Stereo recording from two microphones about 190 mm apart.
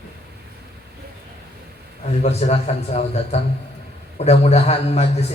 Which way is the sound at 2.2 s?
35° left (ahead or behind).